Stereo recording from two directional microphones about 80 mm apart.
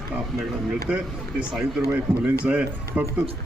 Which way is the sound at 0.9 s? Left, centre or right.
Centre.